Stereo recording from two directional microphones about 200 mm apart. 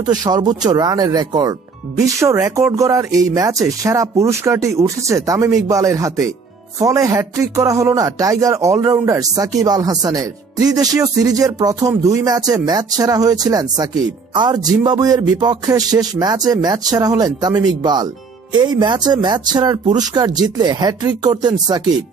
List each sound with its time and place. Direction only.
0.3 s a man's voice: 20° right (ahead or behind)